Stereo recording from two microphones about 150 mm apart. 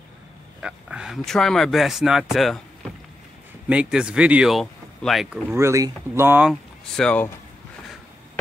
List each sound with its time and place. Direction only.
0.6 s speech: 5° right (ahead or behind)
3.6 s speech: 5° right (ahead or behind)
5.5 s speech: 20° right (ahead or behind)
6.5 s speech: 5° left (ahead or behind)